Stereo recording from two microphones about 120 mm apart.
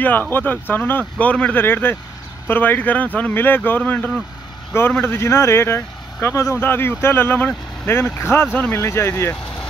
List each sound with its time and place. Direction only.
0.0 s speech: 15° left (ahead or behind)